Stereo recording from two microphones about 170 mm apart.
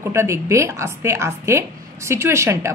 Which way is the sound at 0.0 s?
15° right (ahead or behind).